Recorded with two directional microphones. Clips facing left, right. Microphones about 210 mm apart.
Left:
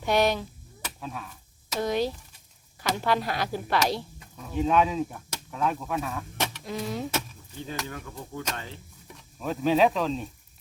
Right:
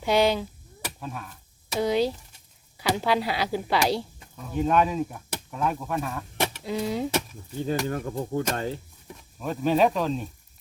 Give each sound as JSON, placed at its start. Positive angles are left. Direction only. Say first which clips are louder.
{"t": 0.0, "sound": "speech", "louder": "right 2 dB", "side_deg": -10}
{"t": 6.3, "sound": "a sound", "louder": "right 4 dB", "side_deg": -15}
{"t": 6.9, "sound": "speech", "louder": "right 4 dB", "side_deg": -15}
{"t": 7.9, "sound": "speech", "louder": "right 10 dB", "side_deg": -45}
{"t": 9.4, "sound": "speech", "louder": "even", "side_deg": 0}